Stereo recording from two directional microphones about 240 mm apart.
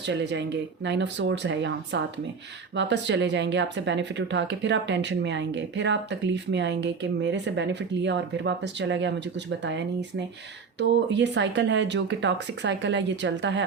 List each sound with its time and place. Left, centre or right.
0.0 s speech: right